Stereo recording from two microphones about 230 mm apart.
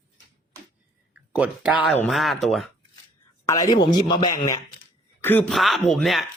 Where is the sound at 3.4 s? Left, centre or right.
Centre.